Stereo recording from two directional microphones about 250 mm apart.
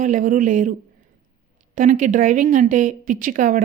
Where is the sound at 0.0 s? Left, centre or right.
Right.